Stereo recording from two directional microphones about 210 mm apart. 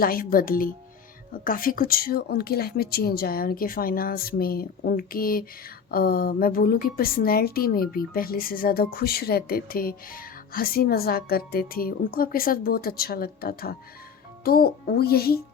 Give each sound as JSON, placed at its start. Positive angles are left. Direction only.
{"t": 0.0, "sound": "speech", "side_deg": 45}